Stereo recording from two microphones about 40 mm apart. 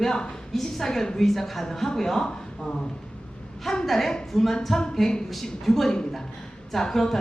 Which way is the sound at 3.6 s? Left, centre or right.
Centre.